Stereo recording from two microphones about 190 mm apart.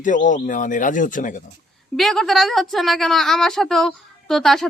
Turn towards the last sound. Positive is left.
turn(degrees=0)  # may be behind; listen again after turning